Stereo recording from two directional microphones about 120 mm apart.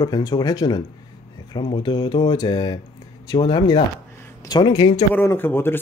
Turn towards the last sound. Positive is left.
turn(degrees=15)  # may be behind; listen again after turning